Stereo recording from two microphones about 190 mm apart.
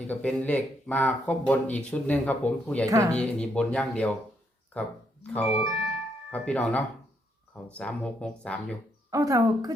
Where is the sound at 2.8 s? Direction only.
15° right (ahead or behind).